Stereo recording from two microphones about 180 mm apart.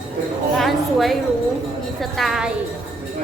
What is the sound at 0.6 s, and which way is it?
Speech, centre (ahead or behind).